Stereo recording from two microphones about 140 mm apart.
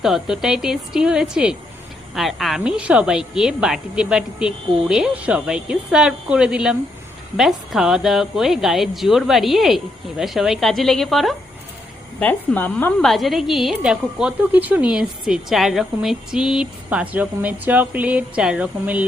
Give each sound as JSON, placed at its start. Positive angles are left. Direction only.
{"t": 0.0, "sound": "a woman's voice", "side_deg": -5}
{"t": 12.2, "sound": "a woman's voice", "side_deg": 10}